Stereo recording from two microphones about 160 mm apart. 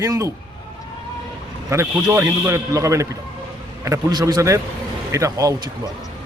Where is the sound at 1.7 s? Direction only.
15° right (ahead or behind).